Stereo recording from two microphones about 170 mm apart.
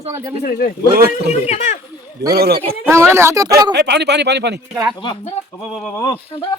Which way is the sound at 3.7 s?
80° right.